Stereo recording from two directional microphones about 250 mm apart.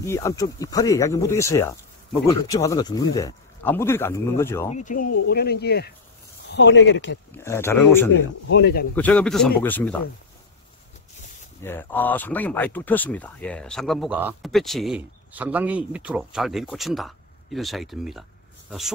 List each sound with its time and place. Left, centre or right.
0.0 s speech: centre
4.6 s speech: left
5.3 s speech: left
7.3 s speech: centre
8.5 s speech: left
8.9 s speech: centre
11.6 s speech: centre